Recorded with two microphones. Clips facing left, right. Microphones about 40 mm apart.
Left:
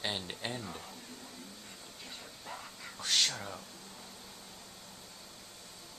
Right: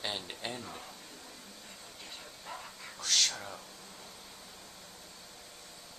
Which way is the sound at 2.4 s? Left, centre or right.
Centre.